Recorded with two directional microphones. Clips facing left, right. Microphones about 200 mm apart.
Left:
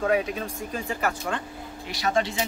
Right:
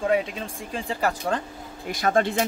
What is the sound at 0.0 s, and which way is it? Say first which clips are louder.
Speech: even; 25° right (ahead or behind).